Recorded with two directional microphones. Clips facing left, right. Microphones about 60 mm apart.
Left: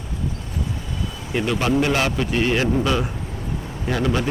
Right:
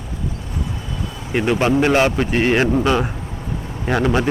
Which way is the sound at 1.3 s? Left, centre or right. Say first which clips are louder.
Right 4 dB; right.